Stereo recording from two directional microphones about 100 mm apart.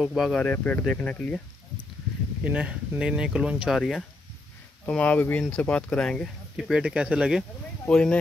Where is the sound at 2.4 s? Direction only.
10° right (ahead or behind).